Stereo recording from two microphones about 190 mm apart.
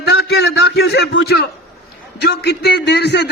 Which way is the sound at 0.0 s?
60° left (ahead or behind).